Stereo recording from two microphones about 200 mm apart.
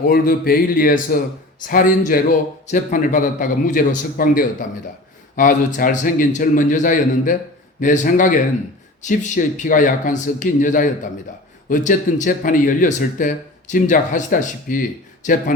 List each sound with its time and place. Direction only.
0.0 s a man's voice: 45° left (ahead or behind)